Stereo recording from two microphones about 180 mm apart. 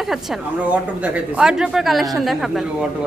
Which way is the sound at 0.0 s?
Centre (ahead or behind).